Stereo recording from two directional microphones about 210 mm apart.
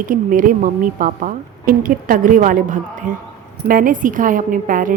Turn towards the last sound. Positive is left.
turn(degrees=-40)  # may be behind; listen again after turning